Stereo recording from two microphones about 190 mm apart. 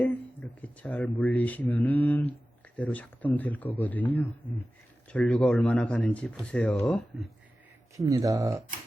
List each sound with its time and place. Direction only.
0.6 s speech: 10° left (ahead or behind)
7.9 s speech: 15° right (ahead or behind)